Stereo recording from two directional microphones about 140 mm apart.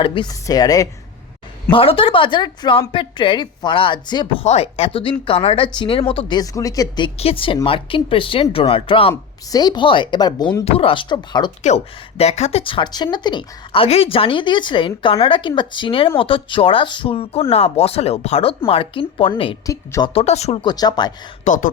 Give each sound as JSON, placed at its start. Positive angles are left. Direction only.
{"t": 0.0, "sound": "a woman's voice", "side_deg": 35}
{"t": 1.7, "sound": "a woman's voice", "side_deg": 40}
{"t": 4.4, "sound": "a woman's voice", "side_deg": 50}
{"t": 7.2, "sound": "a woman's voice", "side_deg": 40}
{"t": 9.5, "sound": "a woman's voice", "side_deg": 30}
{"t": 10.7, "sound": "a woman's voice", "side_deg": 40}
{"t": 11.6, "sound": "a woman's voice", "side_deg": 50}
{"t": 19.6, "sound": "a woman's voice", "side_deg": 25}
{"t": 20.1, "sound": "speech", "side_deg": 50}
{"t": 20.7, "sound": "a woman's voice", "side_deg": 30}
{"t": 21.4, "sound": "speech", "side_deg": 70}